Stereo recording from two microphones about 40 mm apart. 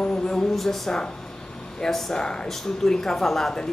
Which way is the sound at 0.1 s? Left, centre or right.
Centre.